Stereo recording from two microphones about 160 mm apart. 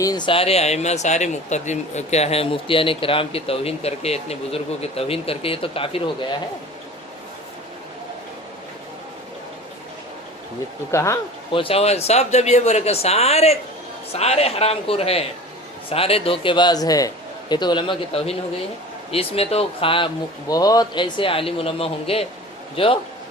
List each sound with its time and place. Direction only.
0.0 s speech: 25° left (ahead or behind)
10.9 s speech: 20° left (ahead or behind)
11.5 s a man's voice: 35° left (ahead or behind)
20.5 s speech: 25° left (ahead or behind)